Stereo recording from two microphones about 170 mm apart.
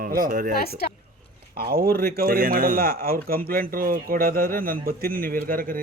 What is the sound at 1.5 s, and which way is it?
Speech, 65° right (ahead or behind).